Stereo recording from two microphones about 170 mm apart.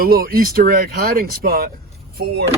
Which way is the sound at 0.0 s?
60° right (ahead or behind).